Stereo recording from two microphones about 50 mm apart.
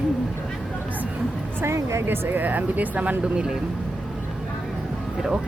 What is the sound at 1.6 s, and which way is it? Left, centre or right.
Music, right.